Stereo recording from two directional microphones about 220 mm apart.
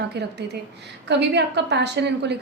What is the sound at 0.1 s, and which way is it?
A woman's voice, 50° right (ahead or behind).